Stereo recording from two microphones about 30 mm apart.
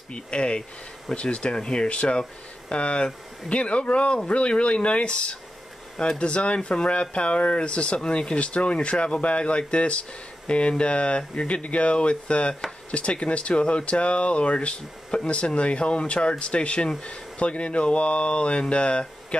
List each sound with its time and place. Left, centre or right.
0.1 s speech: left